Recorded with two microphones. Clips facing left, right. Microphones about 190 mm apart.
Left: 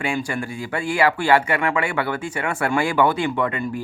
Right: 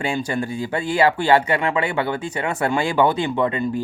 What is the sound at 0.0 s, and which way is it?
Speech, 25° right (ahead or behind).